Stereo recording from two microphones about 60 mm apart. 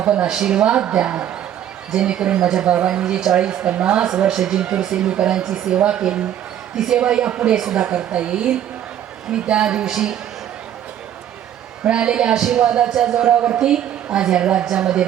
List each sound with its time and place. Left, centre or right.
0.0 s speech: centre
11.8 s speech: centre
13.3 s speech: right
13.6 s speech: centre